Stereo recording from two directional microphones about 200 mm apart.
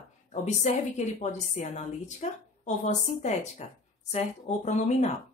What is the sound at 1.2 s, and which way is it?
A woman's voice, 35° left (ahead or behind).